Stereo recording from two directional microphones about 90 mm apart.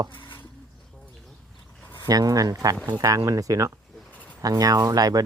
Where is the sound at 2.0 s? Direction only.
45° right (ahead or behind).